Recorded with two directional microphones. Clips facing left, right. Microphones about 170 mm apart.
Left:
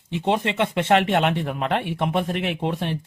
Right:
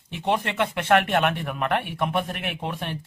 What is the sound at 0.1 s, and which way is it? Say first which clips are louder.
Speech: left 3 dB; 20° left (ahead or behind).